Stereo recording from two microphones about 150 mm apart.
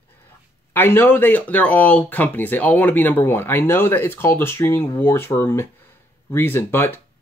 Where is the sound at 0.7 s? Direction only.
15° left (ahead or behind).